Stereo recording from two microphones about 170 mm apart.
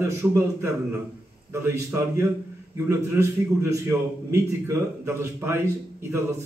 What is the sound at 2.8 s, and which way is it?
A man's voice, 15° right (ahead or behind).